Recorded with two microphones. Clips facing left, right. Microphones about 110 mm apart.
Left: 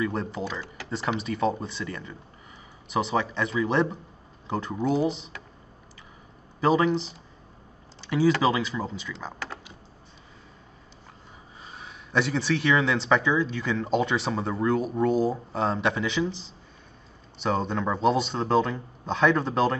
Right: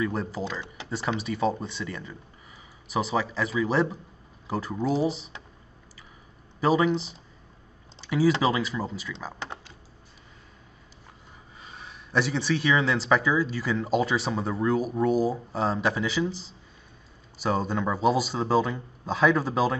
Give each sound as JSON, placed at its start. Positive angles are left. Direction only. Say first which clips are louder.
{"t": 0.0, "sound": "speech", "louder": "even", "side_deg": -5}
{"t": 6.6, "sound": "speech", "louder": "left 1 dB", "side_deg": -5}
{"t": 8.0, "sound": "a sound", "louder": "even", "side_deg": -5}
{"t": 8.4, "sound": "speech", "louder": "left 1 dB", "side_deg": 0}
{"t": 9.4, "sound": "typing", "louder": "even", "side_deg": -20}
{"t": 11.7, "sound": "speech", "louder": "even", "side_deg": 0}